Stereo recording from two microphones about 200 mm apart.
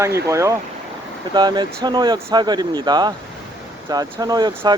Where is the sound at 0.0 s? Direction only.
15° right (ahead or behind).